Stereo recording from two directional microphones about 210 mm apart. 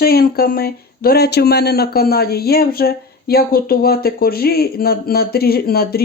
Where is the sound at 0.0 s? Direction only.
45° left (ahead or behind).